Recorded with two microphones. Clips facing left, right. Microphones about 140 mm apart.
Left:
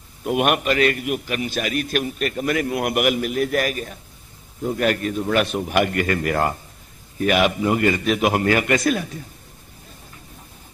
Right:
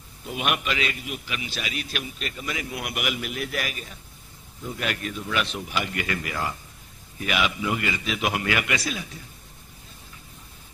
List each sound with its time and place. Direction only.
0.2 s a man's voice: 60° left (ahead or behind)